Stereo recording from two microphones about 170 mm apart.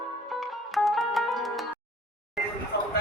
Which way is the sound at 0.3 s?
Centre (ahead or behind).